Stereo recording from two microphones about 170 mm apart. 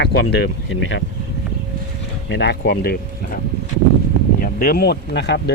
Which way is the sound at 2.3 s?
90° left.